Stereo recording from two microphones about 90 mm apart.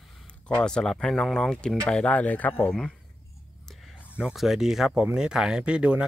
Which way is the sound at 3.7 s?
Centre (ahead or behind).